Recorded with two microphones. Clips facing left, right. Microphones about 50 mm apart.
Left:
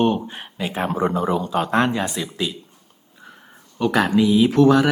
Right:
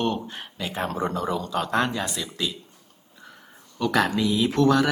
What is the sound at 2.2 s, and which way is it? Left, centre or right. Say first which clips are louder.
Speech: left 4 dB; centre.